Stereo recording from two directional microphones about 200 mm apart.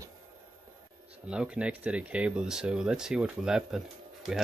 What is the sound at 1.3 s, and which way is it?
Speech, 5° right (ahead or behind).